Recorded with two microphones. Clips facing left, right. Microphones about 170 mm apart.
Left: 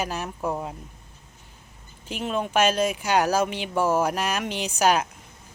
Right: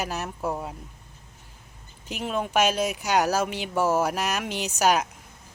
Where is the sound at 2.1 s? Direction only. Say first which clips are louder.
Left 1 dB; 10° right (ahead or behind).